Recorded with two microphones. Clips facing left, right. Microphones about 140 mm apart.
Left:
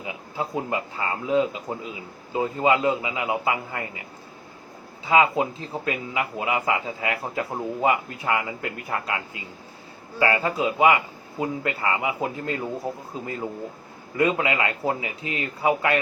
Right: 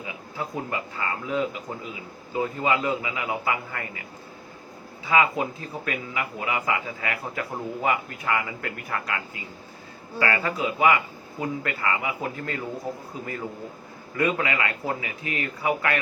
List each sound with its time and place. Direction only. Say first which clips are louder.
0.0 s speech: left 3 dB; 25° left (ahead or behind)
5.0 s speech: left 3 dB; 25° left (ahead or behind)